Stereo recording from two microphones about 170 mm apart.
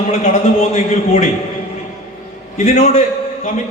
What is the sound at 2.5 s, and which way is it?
Speech, 40° left (ahead or behind).